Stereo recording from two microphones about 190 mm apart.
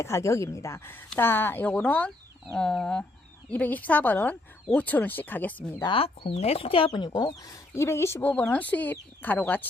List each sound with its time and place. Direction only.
0.0 s speech: 15° left (ahead or behind)
5.8 s speech: 25° left (ahead or behind); by 9.6 s 10° left (ahead or behind)